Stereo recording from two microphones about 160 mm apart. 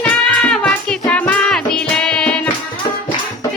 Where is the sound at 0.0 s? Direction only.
5° left (ahead or behind).